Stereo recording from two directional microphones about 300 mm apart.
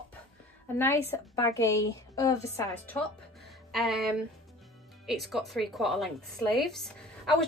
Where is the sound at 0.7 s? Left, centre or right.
Centre.